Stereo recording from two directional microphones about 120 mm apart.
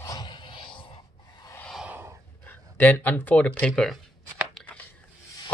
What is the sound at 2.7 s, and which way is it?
Speech, 15° left (ahead or behind).